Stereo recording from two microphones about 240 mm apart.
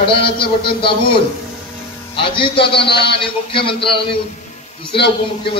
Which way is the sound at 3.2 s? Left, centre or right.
Left.